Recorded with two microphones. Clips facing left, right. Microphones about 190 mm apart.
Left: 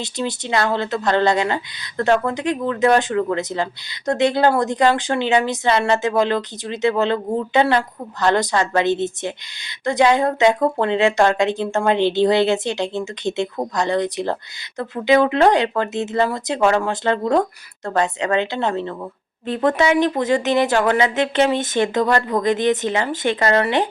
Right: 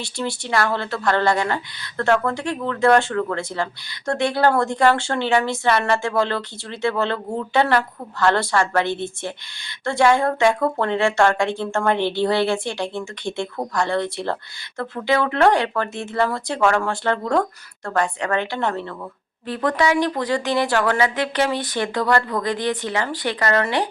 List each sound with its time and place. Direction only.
0.0 s speech: 20° left (ahead or behind)